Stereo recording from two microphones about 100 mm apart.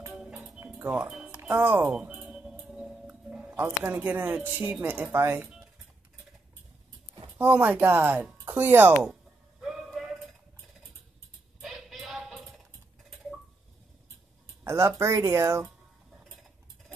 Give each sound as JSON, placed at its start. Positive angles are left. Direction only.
{"t": 0.1, "sound": "music", "side_deg": -5}
{"t": 0.8, "sound": "speech", "side_deg": -10}
{"t": 1.5, "sound": "speech", "side_deg": -20}
{"t": 2.6, "sound": "music", "side_deg": -5}
{"t": 4.8, "sound": "speech", "side_deg": -20}
{"t": 7.3, "sound": "speech", "side_deg": -20}
{"t": 11.6, "sound": "music", "side_deg": 0}
{"t": 14.6, "sound": "speech", "side_deg": -30}